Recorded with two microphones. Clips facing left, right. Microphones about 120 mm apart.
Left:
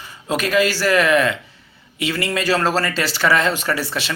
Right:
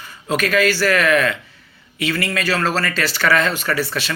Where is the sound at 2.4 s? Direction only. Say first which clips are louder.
Left 3 dB; 30° left (ahead or behind).